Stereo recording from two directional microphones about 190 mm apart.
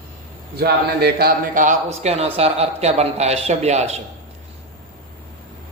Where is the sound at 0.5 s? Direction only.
55° right (ahead or behind); by 4.0 s 35° right (ahead or behind).